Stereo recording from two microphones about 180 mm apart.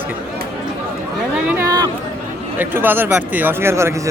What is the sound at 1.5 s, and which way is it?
Speech, 20° right (ahead or behind).